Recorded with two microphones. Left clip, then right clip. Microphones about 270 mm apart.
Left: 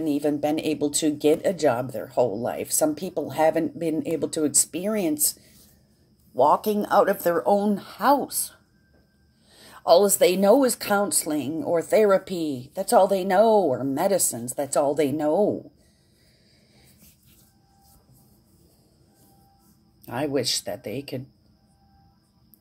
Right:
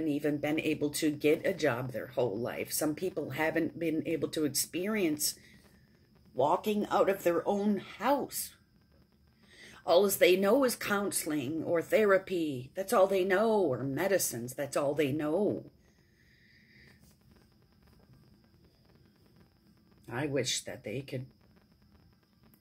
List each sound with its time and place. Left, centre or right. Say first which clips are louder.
0.0 s speech: left 8 dB; left
6.3 s speech: left 9 dB; left
9.6 s speech: left 9 dB; left
20.1 s speech: left 8 dB; left